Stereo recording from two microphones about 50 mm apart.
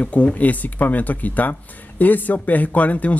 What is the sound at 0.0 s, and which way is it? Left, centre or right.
Speech, left.